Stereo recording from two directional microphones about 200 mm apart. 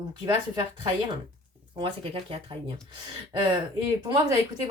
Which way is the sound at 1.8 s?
25° right (ahead or behind).